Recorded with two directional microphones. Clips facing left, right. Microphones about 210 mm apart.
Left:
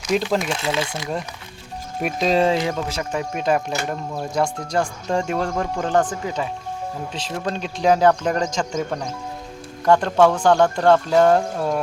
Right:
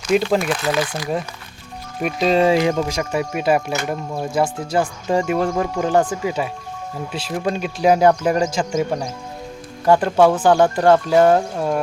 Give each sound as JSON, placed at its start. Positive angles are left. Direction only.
{"t": 0.1, "sound": "speech", "side_deg": 0}
{"t": 0.4, "sound": "speech", "side_deg": 25}
{"t": 2.0, "sound": "speech", "side_deg": 0}
{"t": 2.6, "sound": "speech", "side_deg": -15}